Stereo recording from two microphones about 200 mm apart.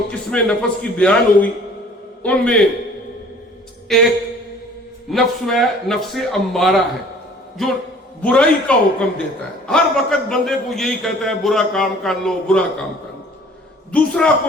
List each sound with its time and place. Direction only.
0.1 s a man's voice: 5° left (ahead or behind)
3.9 s a man's voice: centre (ahead or behind)
5.1 s a man's voice: centre (ahead or behind)
13.9 s a man's voice: 5° left (ahead or behind)